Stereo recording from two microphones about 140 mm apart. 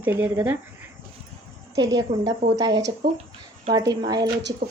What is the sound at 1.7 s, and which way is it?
Speech, 30° right (ahead or behind).